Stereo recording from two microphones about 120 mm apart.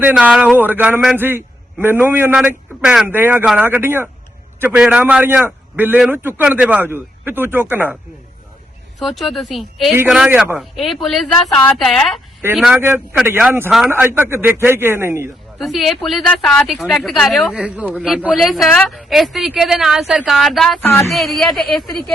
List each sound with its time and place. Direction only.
0.0 s a man's voice: 10° right (ahead or behind)
9.0 s speech: centre (ahead or behind)
10.2 s a man's voice: 15° right (ahead or behind)
10.6 s speech: centre (ahead or behind)
14.2 s speech: 20° right (ahead or behind)
15.5 s speech: centre (ahead or behind)
17.5 s a man's voice: 10° right (ahead or behind)
20.8 s a sound: 20° left (ahead or behind)
21.1 s speech: centre (ahead or behind)